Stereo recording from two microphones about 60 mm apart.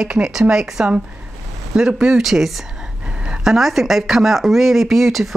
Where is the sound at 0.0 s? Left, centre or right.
Centre.